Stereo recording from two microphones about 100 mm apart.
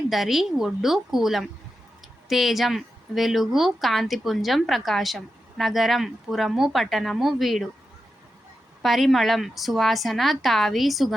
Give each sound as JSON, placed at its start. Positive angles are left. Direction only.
{"t": 0.1, "sound": "a woman's voice", "side_deg": 0}
{"t": 8.8, "sound": "a woman's voice", "side_deg": 0}